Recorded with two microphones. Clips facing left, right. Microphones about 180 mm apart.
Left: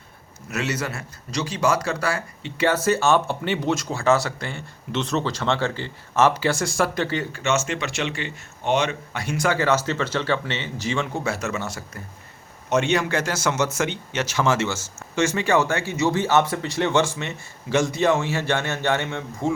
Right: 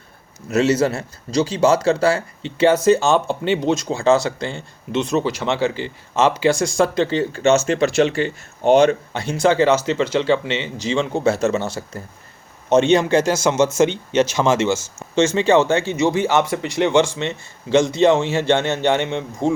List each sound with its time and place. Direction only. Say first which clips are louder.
0.5 s speech: right 10 dB; 30° right (ahead or behind)